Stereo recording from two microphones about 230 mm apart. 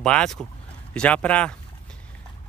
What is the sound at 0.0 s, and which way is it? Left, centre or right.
Speech, centre.